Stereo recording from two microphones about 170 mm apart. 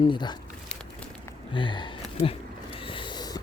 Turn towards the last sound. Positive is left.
turn(degrees=25)  # may be behind; listen again after turning